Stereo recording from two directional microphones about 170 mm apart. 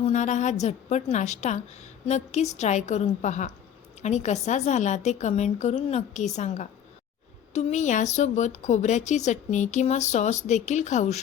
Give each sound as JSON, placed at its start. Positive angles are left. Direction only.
{"t": 0.0, "sound": "a woman's voice", "side_deg": 45}